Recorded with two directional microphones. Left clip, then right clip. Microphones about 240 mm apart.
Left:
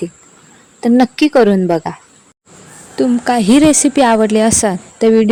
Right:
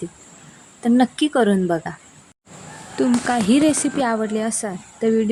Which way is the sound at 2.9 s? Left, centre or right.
Left.